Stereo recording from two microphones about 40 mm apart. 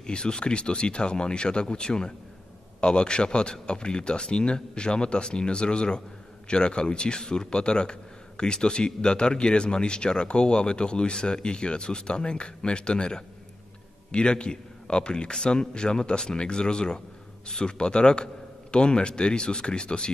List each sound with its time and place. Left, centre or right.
0.0 s a man's voice: left